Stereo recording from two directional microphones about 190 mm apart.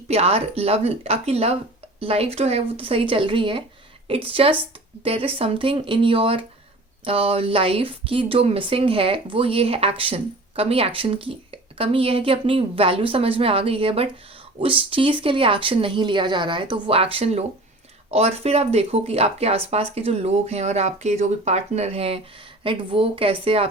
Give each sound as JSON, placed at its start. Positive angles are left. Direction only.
{"t": 0.1, "sound": "speech", "side_deg": -30}